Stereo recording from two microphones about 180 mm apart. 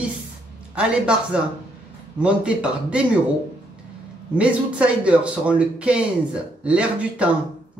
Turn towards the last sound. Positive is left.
turn(degrees=-5)  # may be behind; listen again after turning